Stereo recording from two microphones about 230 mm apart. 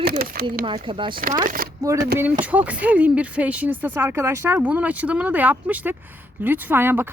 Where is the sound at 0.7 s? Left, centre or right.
Right.